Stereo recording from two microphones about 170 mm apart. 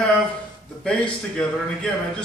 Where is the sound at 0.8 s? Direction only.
5° left (ahead or behind).